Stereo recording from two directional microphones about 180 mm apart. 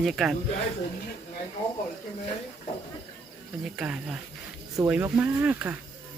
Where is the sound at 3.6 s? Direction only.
5° right (ahead or behind).